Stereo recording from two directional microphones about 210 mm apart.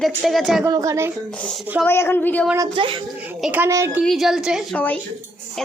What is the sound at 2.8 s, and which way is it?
Speech, 25° right (ahead or behind).